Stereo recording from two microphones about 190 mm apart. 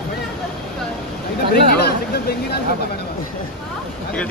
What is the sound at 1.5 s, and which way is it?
Speech, 55° left (ahead or behind).